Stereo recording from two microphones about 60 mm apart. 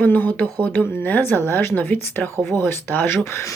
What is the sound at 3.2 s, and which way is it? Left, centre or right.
Speech, left.